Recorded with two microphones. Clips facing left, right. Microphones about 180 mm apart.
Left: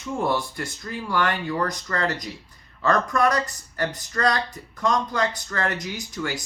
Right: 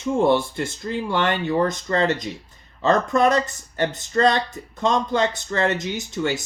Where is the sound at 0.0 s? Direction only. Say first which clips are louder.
Right 7 dB; 25° right (ahead or behind).